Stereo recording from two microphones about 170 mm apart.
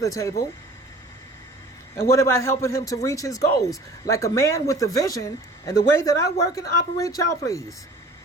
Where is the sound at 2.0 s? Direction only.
15° left (ahead or behind).